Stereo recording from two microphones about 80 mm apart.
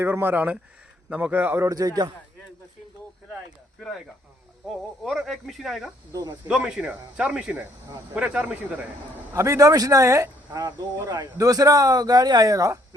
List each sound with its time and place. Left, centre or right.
0.0 s speech: right
1.6 s speech: right
4.7 s speech: centre
6.1 s speech: right
6.5 s speech: centre
9.3 s speech: right
10.6 s speech: right